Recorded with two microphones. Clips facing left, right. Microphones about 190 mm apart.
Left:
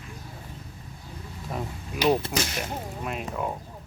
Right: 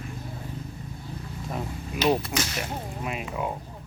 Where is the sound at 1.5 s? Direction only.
Centre (ahead or behind).